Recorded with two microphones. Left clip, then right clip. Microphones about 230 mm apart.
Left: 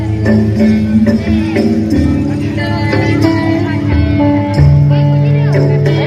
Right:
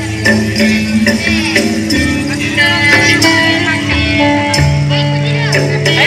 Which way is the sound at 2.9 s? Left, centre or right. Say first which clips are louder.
Right 5 dB; right.